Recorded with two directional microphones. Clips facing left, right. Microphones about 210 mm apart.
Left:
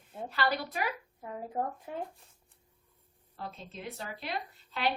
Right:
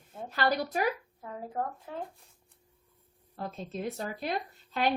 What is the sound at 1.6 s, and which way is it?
Speech, 15° left (ahead or behind).